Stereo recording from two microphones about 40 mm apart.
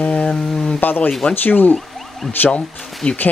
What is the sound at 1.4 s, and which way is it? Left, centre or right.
Speech, left.